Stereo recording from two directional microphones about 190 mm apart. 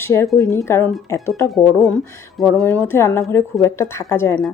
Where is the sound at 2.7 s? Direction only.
10° left (ahead or behind).